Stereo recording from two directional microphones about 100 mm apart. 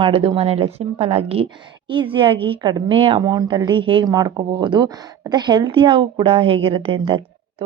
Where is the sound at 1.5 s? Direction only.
55° right (ahead or behind).